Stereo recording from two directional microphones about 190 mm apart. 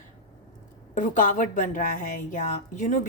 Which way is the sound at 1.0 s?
45° left (ahead or behind).